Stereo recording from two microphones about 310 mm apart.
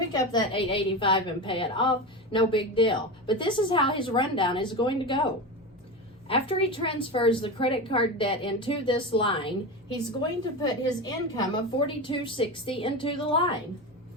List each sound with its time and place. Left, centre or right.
0.1 s a woman's voice: centre